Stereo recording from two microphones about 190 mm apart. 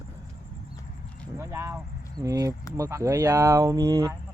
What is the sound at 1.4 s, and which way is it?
Speech, 15° right (ahead or behind).